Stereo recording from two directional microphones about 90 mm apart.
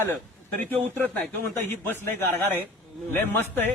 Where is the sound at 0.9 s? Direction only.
15° left (ahead or behind).